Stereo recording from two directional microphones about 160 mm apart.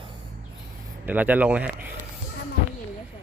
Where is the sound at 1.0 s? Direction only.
10° right (ahead or behind).